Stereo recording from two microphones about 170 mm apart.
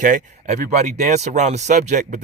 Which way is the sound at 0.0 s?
50° right (ahead or behind).